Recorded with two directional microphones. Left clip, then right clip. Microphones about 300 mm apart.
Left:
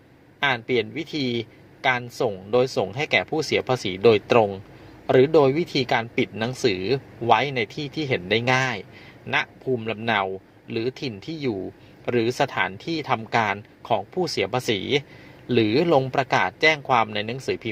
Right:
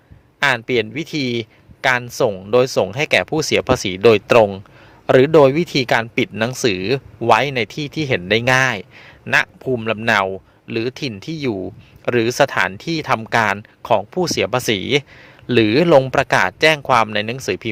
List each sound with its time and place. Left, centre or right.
0.4 s speech: right